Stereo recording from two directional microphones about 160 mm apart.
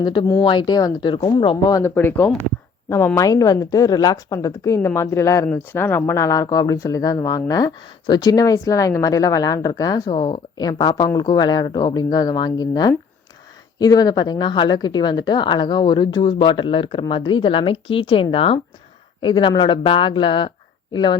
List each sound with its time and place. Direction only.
0.0 s speech: 25° left (ahead or behind)
1.8 s a woman's voice: 15° left (ahead or behind); by 21.2 s 30° left (ahead or behind)